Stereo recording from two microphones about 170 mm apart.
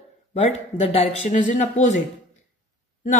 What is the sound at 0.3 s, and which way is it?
A woman's voice, 40° left (ahead or behind).